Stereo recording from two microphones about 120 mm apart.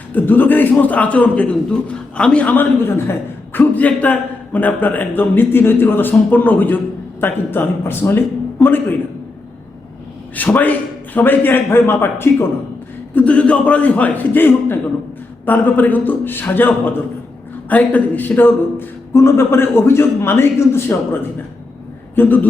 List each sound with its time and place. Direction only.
0.1 s a man's voice: 15° left (ahead or behind)
10.3 s a man's voice: 15° left (ahead or behind)